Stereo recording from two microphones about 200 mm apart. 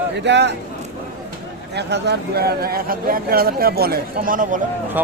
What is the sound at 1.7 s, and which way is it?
Speech, 55° right (ahead or behind).